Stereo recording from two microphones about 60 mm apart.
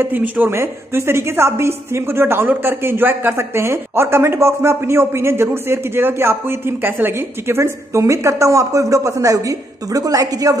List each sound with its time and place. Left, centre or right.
0.0 s a woman's voice: right